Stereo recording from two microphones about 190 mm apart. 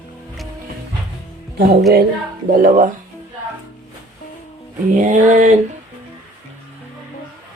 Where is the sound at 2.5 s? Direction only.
45° right (ahead or behind).